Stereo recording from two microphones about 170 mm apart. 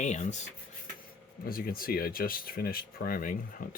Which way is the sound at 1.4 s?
60° left (ahead or behind).